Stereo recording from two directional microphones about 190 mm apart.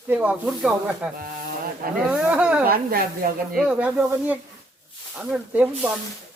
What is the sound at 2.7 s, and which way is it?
Speech, 50° right (ahead or behind).